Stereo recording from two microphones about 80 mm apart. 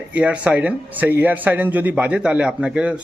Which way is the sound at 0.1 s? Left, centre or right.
Centre.